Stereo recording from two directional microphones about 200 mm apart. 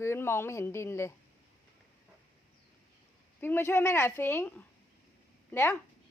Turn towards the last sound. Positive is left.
turn(degrees=15)  # may be behind; listen again after turning